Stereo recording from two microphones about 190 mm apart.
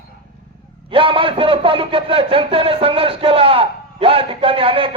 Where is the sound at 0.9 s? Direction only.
30° right (ahead or behind).